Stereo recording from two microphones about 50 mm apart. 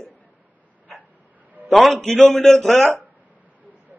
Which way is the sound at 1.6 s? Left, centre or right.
Right.